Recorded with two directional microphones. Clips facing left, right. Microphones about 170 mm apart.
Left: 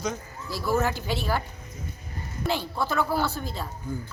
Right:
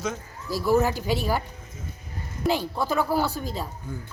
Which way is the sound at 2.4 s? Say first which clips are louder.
Right 4 dB; 40° right (ahead or behind).